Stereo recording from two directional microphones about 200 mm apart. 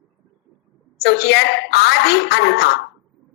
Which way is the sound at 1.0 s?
55° left (ahead or behind).